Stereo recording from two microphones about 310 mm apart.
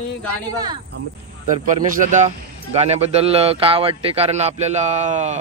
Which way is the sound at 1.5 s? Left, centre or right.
Right.